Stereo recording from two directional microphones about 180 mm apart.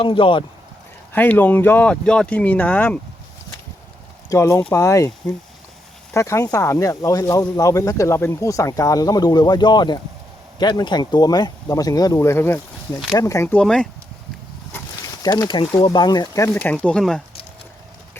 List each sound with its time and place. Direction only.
0.0 s speech: 30° left (ahead or behind)
1.1 s speech: 10° left (ahead or behind)
4.3 s speech: 15° left (ahead or behind)
15.2 s speech: 20° left (ahead or behind); by 17.2 s 5° left (ahead or behind)